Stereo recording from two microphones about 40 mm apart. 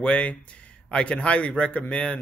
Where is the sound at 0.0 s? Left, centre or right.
Left.